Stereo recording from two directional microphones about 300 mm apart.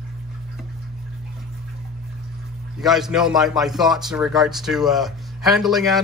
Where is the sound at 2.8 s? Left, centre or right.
Centre.